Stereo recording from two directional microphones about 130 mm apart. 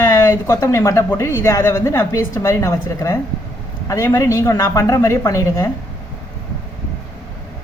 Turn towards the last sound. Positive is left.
turn(degrees=25)  # may be behind; listen again after turning